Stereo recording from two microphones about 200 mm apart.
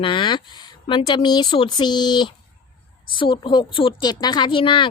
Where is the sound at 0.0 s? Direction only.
25° left (ahead or behind).